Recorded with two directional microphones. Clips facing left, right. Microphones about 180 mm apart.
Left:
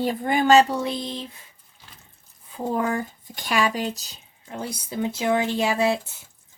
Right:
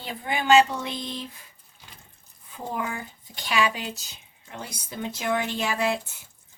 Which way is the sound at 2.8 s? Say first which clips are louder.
Left 7 dB; 40° left (ahead or behind).